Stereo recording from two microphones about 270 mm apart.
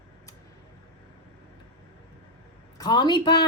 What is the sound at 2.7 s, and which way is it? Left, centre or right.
Speech, centre.